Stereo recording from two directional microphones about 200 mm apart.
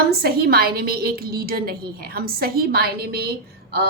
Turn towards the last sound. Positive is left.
turn(degrees=-50)  # may be behind; listen again after turning